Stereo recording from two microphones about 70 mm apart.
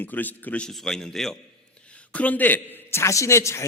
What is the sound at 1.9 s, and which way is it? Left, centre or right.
A man's voice, centre.